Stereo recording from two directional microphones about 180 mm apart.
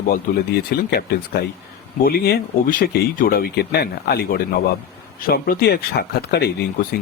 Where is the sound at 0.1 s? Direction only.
60° left (ahead or behind).